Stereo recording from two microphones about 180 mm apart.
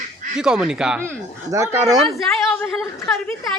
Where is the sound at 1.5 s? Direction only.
20° right (ahead or behind).